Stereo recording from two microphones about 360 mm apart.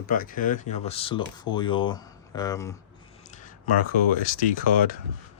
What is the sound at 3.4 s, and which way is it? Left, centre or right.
Speech, left.